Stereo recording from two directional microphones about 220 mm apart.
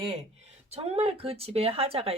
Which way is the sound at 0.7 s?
30° right (ahead or behind).